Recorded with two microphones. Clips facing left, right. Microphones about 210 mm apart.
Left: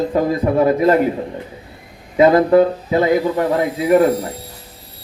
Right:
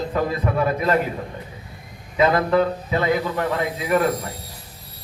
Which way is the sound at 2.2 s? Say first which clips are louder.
Left 7 dB; 35° left (ahead or behind).